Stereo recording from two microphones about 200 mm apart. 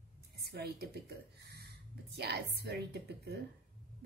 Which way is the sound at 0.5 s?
50° right (ahead or behind).